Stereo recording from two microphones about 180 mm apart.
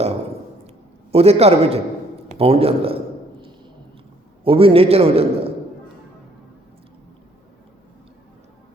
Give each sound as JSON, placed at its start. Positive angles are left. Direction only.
{"t": 1.1, "sound": "a man's voice", "side_deg": -35}
{"t": 4.4, "sound": "a man's voice", "side_deg": -30}